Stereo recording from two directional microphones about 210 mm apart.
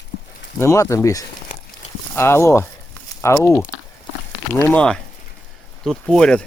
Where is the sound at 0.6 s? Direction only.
15° left (ahead or behind).